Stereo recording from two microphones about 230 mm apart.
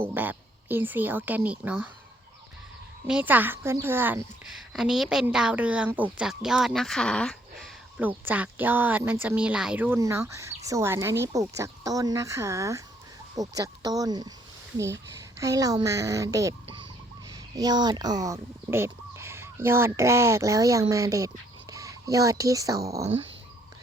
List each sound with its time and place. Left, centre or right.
0.0 s speech: centre
3.1 s a woman's voice: centre